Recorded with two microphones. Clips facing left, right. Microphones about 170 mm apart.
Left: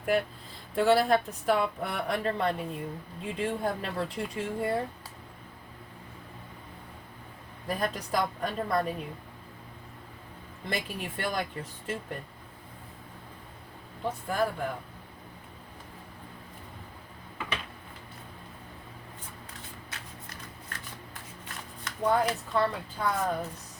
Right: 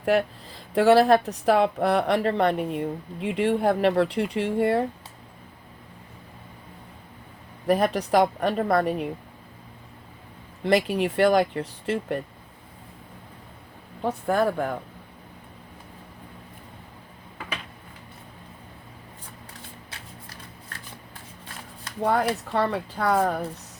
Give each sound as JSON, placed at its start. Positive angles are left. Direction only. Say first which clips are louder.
{"t": 0.7, "sound": "speech", "louder": "right 6 dB", "side_deg": -80}
{"t": 7.7, "sound": "speech", "louder": "right 10 dB", "side_deg": -75}
{"t": 10.6, "sound": "speech", "louder": "right 13 dB", "side_deg": -80}
{"t": 14.0, "sound": "speech", "louder": "right 6 dB", "side_deg": -60}
{"t": 22.0, "sound": "speech", "louder": "right 3 dB", "side_deg": -70}